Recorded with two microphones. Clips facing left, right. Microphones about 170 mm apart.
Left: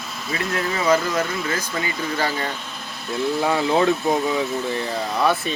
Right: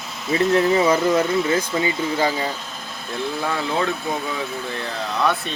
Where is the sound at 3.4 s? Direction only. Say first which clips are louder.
Left 5 dB; 20° left (ahead or behind).